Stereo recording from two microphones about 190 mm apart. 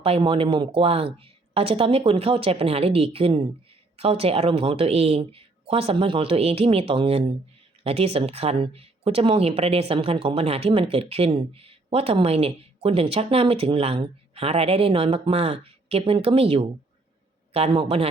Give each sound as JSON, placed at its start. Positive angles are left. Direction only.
{"t": 0.0, "sound": "speech", "side_deg": -30}